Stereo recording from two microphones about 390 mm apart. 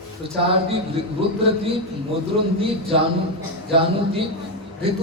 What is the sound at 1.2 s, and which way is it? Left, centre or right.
Speech, centre.